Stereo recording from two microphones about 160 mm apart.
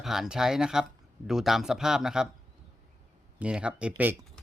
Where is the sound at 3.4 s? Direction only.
5° right (ahead or behind).